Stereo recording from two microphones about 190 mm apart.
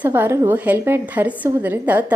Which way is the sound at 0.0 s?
10° right (ahead or behind).